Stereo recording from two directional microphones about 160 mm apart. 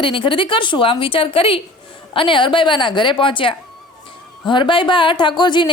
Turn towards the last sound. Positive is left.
turn(degrees=30)  # may be behind; listen again after turning